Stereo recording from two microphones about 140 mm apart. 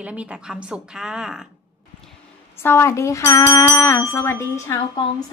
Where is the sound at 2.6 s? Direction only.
20° left (ahead or behind).